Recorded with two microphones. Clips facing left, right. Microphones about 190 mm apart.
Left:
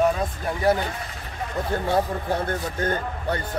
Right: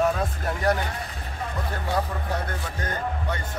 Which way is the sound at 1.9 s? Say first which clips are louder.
Left 3 dB; 30° left (ahead or behind).